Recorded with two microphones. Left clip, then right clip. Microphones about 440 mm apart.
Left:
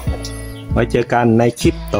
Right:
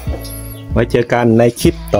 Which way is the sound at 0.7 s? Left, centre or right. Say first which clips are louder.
Right 2 dB; right.